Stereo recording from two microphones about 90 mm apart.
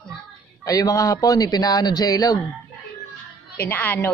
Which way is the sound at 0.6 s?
40° left (ahead or behind).